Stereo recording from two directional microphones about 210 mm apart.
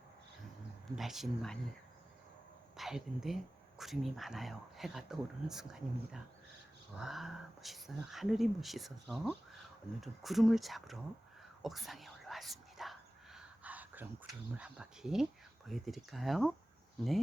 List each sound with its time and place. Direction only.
0.9 s speech: centre (ahead or behind)
2.7 s speech: centre (ahead or behind)
11.6 s whispering: centre (ahead or behind)